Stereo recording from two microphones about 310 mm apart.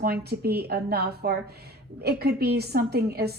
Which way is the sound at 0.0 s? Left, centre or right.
Right.